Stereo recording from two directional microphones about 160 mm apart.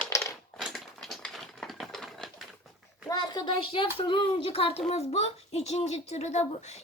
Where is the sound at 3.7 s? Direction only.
35° left (ahead or behind).